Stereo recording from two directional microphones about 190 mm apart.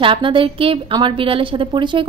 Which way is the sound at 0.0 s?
25° right (ahead or behind).